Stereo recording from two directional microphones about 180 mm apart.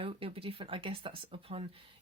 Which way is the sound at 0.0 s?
30° right (ahead or behind).